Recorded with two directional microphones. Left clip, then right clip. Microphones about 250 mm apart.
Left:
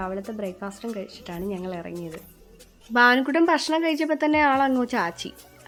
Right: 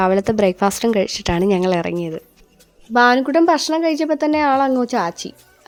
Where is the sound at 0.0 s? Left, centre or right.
Right.